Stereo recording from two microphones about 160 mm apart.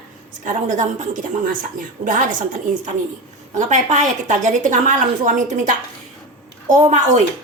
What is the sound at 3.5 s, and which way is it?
A woman's voice, 50° right (ahead or behind).